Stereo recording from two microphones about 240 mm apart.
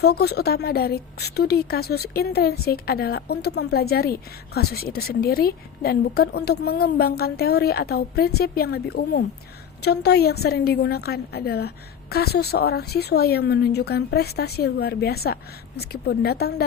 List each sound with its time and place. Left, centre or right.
0.0 s a woman's voice: left